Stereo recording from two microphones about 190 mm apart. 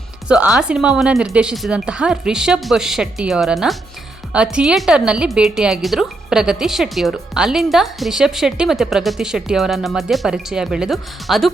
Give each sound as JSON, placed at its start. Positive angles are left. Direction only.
{"t": 0.3, "sound": "a woman's voice", "side_deg": -5}